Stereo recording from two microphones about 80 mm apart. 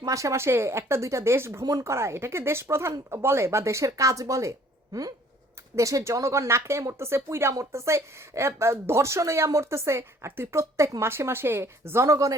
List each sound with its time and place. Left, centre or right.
0.0 s speech: right
5.7 s speech: right